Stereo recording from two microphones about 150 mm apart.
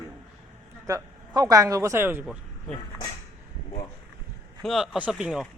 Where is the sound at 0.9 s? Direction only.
25° right (ahead or behind).